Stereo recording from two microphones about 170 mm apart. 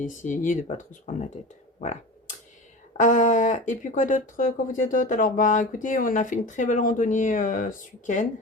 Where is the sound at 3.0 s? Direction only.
50° left (ahead or behind).